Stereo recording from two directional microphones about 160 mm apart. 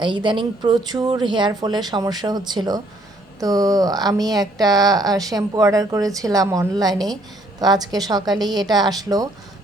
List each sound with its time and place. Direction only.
0.0 s a woman's voice: 30° right (ahead or behind)